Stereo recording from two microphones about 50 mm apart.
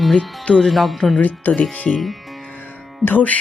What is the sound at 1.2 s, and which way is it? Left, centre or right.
Speech, left.